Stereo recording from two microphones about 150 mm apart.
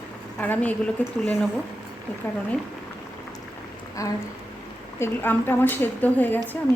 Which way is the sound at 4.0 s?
20° left (ahead or behind).